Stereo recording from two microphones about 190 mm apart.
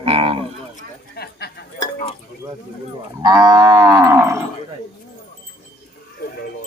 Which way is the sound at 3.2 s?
20° right (ahead or behind).